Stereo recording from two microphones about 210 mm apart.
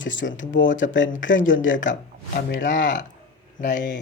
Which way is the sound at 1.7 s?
35° left (ahead or behind).